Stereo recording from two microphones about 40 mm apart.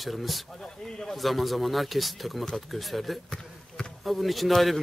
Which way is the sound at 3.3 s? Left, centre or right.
Centre.